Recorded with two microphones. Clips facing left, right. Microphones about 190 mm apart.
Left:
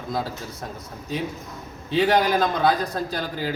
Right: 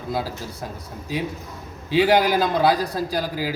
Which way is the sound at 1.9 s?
5° right (ahead or behind).